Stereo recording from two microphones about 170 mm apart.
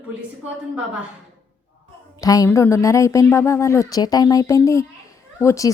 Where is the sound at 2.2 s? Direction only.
20° left (ahead or behind).